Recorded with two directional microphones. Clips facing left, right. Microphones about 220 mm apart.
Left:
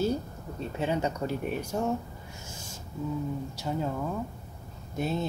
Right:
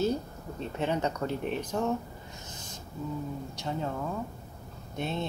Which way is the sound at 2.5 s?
10° left (ahead or behind).